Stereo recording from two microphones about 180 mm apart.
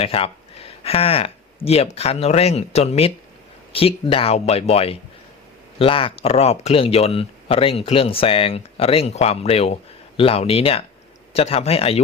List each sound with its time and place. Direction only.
0.0 s speech: 30° left (ahead or behind)